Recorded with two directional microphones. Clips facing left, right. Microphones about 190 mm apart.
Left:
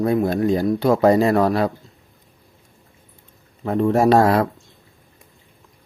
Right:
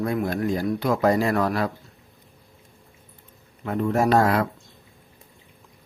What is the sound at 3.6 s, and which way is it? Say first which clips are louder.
Speech: left 5 dB; 30° left (ahead or behind).